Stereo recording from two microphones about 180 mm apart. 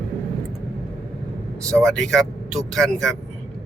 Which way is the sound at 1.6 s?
5° left (ahead or behind).